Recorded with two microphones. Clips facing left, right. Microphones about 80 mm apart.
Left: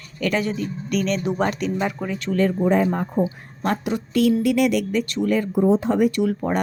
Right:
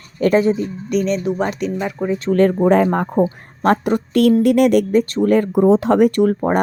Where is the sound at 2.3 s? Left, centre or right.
Right.